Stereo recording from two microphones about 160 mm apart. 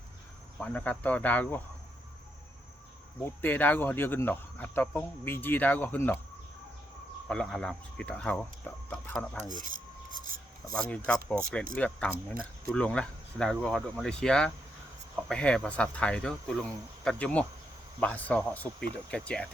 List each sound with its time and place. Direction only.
0.6 s speech: 10° left (ahead or behind)
3.2 s speech: 10° left (ahead or behind)
7.3 s speech: 5° left (ahead or behind)
9.5 s cutlery: 55° right (ahead or behind)
10.8 s speech: 5° left (ahead or behind)